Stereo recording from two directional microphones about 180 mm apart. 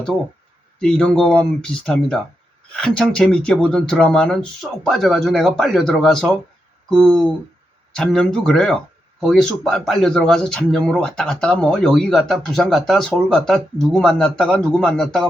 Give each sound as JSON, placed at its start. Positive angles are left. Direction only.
{"t": 0.8, "sound": "speech", "side_deg": 5}